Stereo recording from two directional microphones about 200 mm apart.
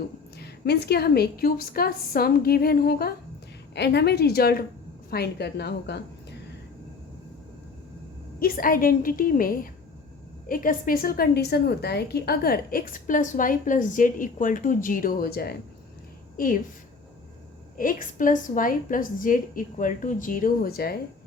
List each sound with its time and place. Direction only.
0.3 s a woman's voice: 55° left (ahead or behind)
8.4 s a woman's voice: 45° left (ahead or behind)
17.7 s a woman's voice: 45° left (ahead or behind)